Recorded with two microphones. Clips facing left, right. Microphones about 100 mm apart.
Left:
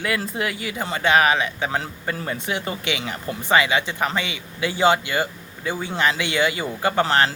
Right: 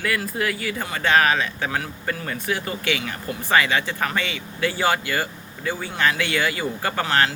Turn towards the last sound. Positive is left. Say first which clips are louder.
# left 3 dB
turn(degrees=30)  # may be behind; listen again after turning